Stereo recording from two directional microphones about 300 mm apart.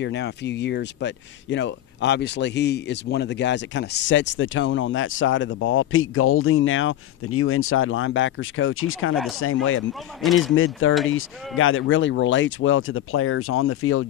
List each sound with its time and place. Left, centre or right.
0.0 s speech: left
10.2 s speech: centre
10.5 s speech: left